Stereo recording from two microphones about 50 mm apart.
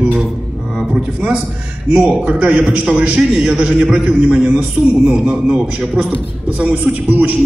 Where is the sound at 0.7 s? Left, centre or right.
Centre.